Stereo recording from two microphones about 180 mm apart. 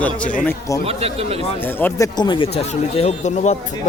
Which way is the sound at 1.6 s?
10° left (ahead or behind).